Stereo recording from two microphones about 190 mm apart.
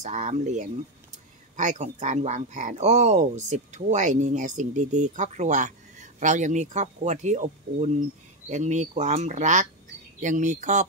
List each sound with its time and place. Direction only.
0.0 s speech: 40° right (ahead or behind)